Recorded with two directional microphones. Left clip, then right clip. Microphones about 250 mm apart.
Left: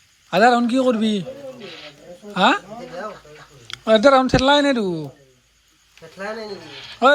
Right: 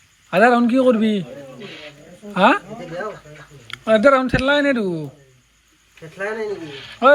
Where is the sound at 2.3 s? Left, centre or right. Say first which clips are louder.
Right 2 dB; centre.